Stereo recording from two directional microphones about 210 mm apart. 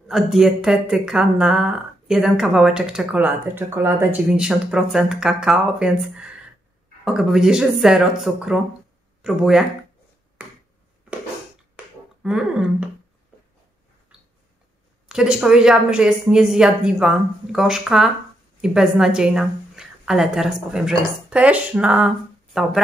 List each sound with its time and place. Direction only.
0.1 s speech: centre (ahead or behind)
11.7 s finger snapping: 5° right (ahead or behind)
15.0 s a woman's voice: 5° right (ahead or behind)